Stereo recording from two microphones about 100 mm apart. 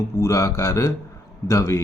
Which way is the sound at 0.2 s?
30° left (ahead or behind).